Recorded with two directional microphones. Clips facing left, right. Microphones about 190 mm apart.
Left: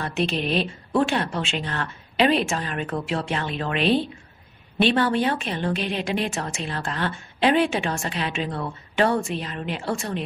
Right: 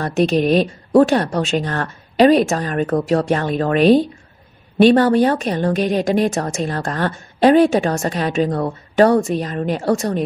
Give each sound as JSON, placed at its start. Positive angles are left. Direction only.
{"t": 0.0, "sound": "a woman's voice", "side_deg": -45}